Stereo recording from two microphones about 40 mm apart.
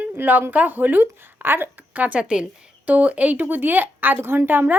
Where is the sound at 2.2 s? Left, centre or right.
Right.